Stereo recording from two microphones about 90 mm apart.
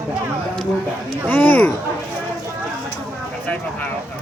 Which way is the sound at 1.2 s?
20° left (ahead or behind).